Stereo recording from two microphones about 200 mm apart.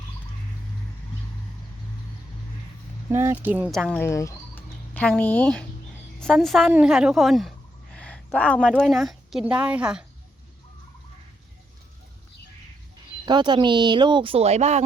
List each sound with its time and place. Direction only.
3.1 s a woman's voice: 10° right (ahead or behind)
13.2 s speech: 20° right (ahead or behind)